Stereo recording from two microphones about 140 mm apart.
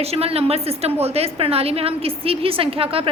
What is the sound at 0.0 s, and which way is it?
A woman's voice, 45° right (ahead or behind).